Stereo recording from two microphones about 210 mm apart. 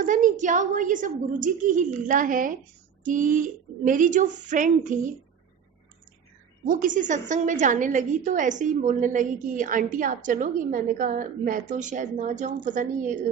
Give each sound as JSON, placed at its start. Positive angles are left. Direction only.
{"t": 0.0, "sound": "a woman's voice", "side_deg": -35}
{"t": 6.7, "sound": "a woman's voice", "side_deg": -40}